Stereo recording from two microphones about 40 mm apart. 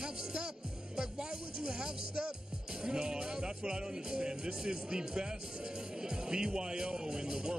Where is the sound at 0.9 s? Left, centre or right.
Centre.